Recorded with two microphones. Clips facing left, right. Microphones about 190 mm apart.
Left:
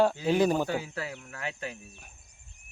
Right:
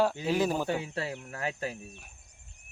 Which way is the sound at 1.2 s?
40° right (ahead or behind).